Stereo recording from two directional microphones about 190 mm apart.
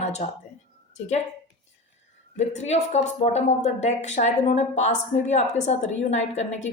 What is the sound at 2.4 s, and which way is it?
Speech, 35° left (ahead or behind).